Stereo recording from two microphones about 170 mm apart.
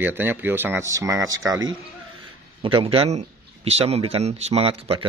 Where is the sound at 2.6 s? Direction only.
30° right (ahead or behind).